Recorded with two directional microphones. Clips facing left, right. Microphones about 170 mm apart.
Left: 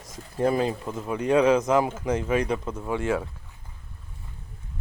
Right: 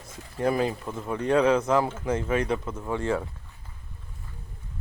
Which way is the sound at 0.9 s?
10° left (ahead or behind).